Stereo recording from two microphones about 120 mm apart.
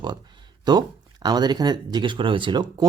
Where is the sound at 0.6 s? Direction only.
35° right (ahead or behind).